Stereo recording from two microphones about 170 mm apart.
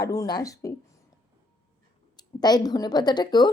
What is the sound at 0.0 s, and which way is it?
Speech, 20° left (ahead or behind).